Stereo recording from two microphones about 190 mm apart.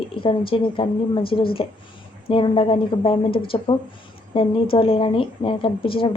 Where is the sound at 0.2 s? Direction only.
30° left (ahead or behind).